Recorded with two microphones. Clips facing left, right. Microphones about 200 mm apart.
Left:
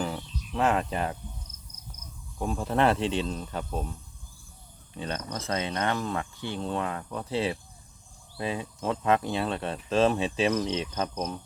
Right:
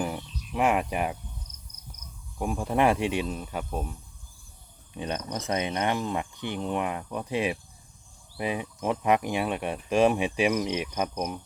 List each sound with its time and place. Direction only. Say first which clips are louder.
0.0 s music: right 1 dB; 10° right (ahead or behind)
2.4 s speech: right 1 dB; 10° right (ahead or behind)
4.9 s speech: right 2 dB; 15° right (ahead or behind)